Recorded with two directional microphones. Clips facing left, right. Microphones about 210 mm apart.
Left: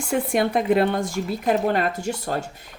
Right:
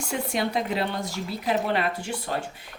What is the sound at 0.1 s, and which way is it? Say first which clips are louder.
Speech: left 6 dB; 55° left (ahead or behind).